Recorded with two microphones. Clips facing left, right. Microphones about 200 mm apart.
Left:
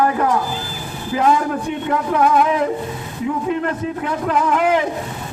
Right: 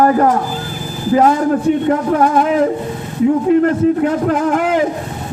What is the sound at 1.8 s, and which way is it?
Speech, 45° right (ahead or behind).